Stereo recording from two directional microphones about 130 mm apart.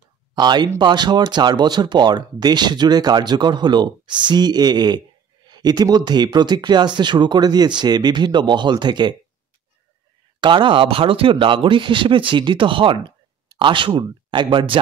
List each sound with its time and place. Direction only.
0.3 s speech: 35° right (ahead or behind)
10.4 s speech: 40° right (ahead or behind)